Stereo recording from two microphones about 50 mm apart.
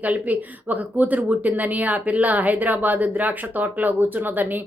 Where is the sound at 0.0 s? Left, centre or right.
Right.